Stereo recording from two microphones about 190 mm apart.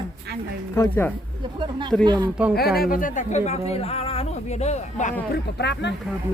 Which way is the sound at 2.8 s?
45° left (ahead or behind).